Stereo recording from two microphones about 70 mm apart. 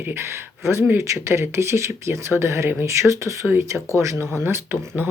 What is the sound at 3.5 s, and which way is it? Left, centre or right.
Speech, right.